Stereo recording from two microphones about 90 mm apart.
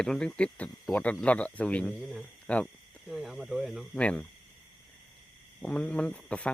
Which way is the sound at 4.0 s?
15° left (ahead or behind).